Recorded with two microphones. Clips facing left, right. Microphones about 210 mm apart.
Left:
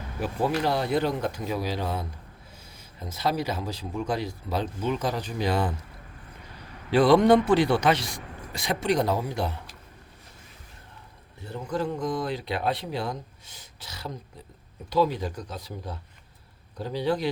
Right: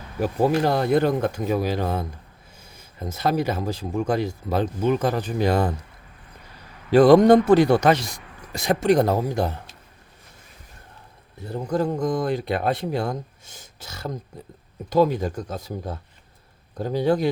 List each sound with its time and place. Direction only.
0.2 s speech: 45° right (ahead or behind)
6.9 s speech: 45° right (ahead or behind)
11.4 s speech: 40° right (ahead or behind)